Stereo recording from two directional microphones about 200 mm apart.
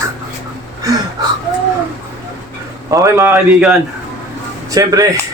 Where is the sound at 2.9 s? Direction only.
15° right (ahead or behind).